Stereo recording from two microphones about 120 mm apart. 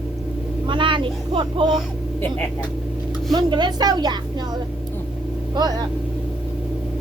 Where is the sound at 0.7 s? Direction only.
45° right (ahead or behind).